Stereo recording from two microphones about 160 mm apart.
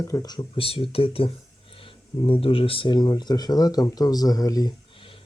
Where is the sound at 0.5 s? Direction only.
35° left (ahead or behind).